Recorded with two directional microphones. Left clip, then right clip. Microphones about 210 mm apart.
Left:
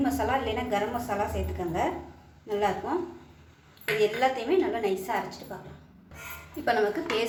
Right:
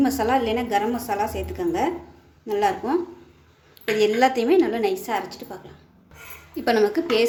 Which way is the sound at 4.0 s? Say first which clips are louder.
Right 7 dB; 55° right (ahead or behind).